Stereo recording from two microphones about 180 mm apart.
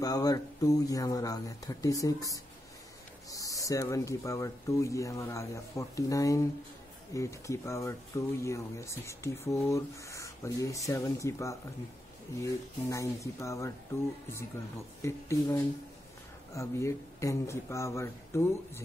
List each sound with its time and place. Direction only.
0.0 s speech: 20° left (ahead or behind)
15.0 s speech: 15° left (ahead or behind)